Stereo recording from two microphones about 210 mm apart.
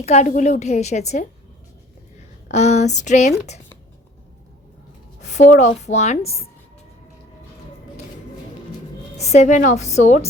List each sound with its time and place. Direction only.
0.0 s a woman's voice: 30° left (ahead or behind)
2.5 s a sound: 35° left (ahead or behind)
5.2 s a woman's voice: 35° left (ahead or behind)
9.1 s a woman's voice: 30° left (ahead or behind)